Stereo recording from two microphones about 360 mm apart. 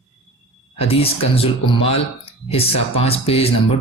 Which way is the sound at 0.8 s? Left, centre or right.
Centre.